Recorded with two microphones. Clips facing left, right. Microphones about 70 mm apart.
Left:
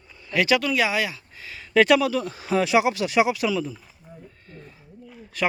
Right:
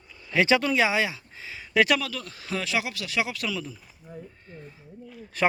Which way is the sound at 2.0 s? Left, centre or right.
Centre.